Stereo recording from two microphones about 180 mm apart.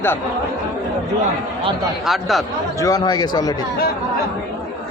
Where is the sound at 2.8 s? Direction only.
20° left (ahead or behind).